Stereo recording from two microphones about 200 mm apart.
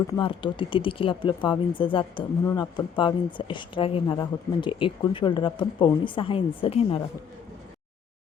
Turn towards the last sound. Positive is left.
turn(degrees=30)  # may be behind; listen again after turning